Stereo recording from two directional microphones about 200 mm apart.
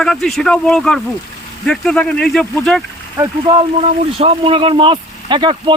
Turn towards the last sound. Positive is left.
turn(degrees=-25)  # may be behind; listen again after turning